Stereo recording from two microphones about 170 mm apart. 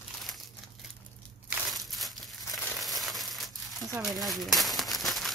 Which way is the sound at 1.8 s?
Centre (ahead or behind).